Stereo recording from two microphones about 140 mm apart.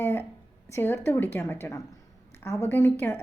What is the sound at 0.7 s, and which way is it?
A woman's voice, 15° left (ahead or behind).